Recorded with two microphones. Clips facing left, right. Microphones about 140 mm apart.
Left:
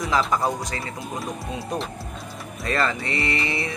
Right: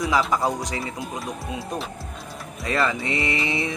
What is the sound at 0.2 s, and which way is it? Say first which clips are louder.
Speech: even; centre (ahead or behind).